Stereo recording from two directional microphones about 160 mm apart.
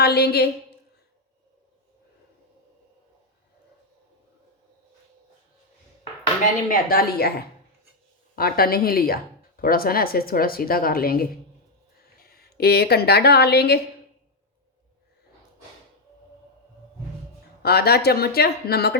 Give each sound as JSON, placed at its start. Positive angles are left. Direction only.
{"t": 0.0, "sound": "a woman's voice", "side_deg": 90}
{"t": 6.4, "sound": "a woman's voice", "side_deg": 65}
{"t": 17.6, "sound": "speech", "side_deg": 80}